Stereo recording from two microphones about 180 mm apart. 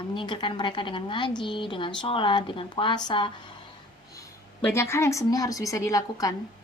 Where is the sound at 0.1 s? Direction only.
25° left (ahead or behind).